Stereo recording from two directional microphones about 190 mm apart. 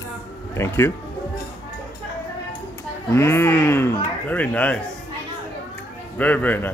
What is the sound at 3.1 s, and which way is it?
Speech, 15° left (ahead or behind).